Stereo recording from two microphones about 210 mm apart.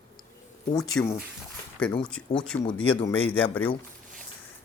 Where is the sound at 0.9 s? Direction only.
5° left (ahead or behind).